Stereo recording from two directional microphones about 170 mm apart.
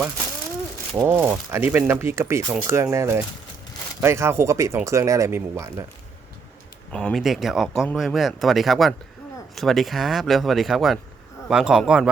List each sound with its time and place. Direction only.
0.9 s speech: 15° right (ahead or behind)
6.9 s speech: centre (ahead or behind)